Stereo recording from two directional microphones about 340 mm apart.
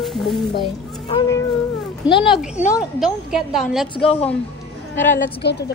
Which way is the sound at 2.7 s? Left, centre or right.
Centre.